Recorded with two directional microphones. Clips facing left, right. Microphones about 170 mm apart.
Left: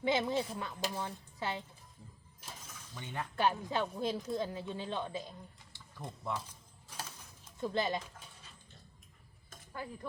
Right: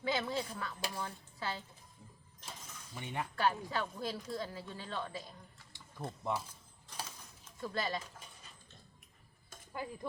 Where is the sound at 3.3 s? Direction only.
20° left (ahead or behind).